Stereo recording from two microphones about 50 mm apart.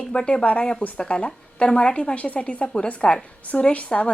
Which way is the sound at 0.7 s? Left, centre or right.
Centre.